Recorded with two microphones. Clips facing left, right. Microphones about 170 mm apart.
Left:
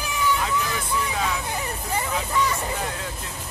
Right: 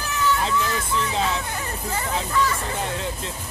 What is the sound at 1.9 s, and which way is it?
Speech, 15° left (ahead or behind).